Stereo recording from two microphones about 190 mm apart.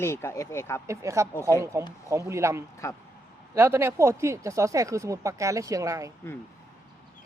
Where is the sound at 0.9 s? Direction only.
15° right (ahead or behind).